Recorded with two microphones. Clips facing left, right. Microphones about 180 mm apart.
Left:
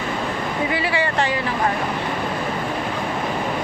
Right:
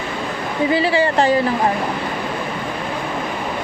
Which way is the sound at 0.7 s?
30° right (ahead or behind).